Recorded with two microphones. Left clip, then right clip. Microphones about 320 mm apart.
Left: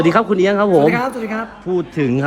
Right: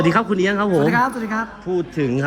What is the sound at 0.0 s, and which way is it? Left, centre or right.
Speech, centre.